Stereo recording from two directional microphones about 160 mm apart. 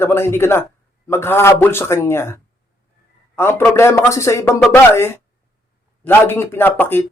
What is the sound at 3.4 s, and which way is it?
Speech, 15° left (ahead or behind).